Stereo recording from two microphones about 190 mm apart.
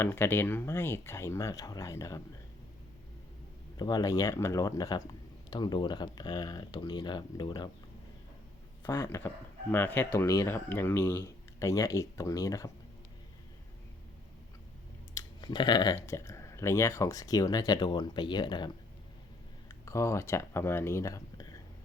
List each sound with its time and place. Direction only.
0.0 s speech: 10° left (ahead or behind)
3.8 s speech: 20° left (ahead or behind)
8.8 s speech: 10° left (ahead or behind)
15.1 s speech: 20° left (ahead or behind)
19.8 s speech: 15° left (ahead or behind)